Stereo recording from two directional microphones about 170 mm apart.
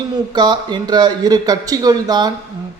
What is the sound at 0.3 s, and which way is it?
Speech, 25° right (ahead or behind).